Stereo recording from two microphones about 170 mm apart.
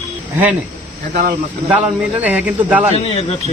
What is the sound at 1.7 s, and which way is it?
Speech, 10° right (ahead or behind).